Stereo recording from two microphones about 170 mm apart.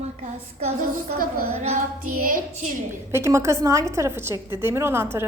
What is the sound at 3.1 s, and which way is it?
A woman's voice, 15° right (ahead or behind).